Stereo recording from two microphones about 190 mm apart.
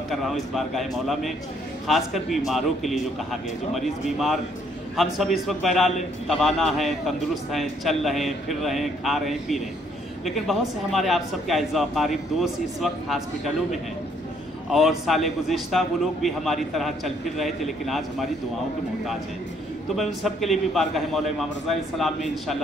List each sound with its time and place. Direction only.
0.1 s a man's voice: centre (ahead or behind)
14.7 s a man's voice: centre (ahead or behind)
20.0 s a man's voice: centre (ahead or behind)